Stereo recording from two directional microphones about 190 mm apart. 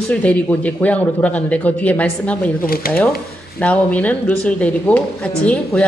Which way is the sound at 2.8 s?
50° left (ahead or behind).